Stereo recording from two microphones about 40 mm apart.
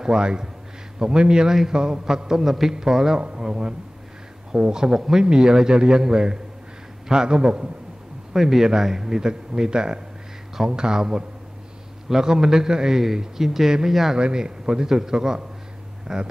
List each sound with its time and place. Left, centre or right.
0.0 s a man's voice: centre